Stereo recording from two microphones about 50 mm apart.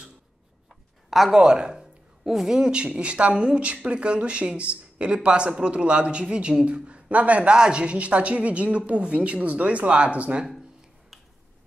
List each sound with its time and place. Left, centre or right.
1.1 s speech: centre
1.4 s a woman's voice: centre